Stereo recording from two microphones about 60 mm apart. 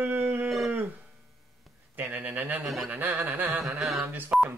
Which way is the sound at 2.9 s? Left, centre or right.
Right.